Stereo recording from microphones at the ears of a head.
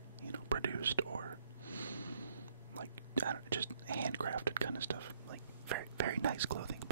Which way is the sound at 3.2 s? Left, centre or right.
Right.